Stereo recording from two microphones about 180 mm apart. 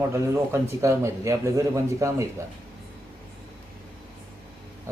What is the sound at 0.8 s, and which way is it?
A man's voice, 15° right (ahead or behind).